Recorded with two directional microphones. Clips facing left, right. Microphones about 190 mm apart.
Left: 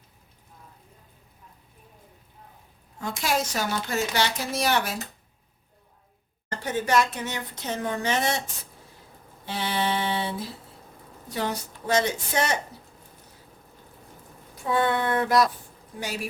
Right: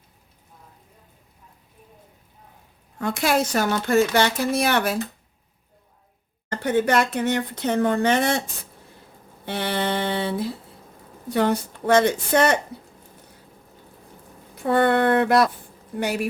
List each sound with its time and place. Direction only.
3.0 s speech: 60° right (ahead or behind)
6.6 s speech: 60° right (ahead or behind)
9.5 s speech: 60° right (ahead or behind)
14.5 s speech: 60° right (ahead or behind)